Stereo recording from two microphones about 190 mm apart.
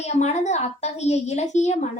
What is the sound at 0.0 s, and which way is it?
A woman's voice, 35° left (ahead or behind).